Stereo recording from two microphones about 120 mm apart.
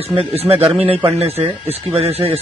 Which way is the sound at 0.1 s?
50° right (ahead or behind).